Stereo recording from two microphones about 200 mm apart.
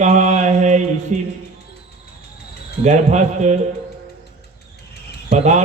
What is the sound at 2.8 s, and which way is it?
Speech, 35° right (ahead or behind).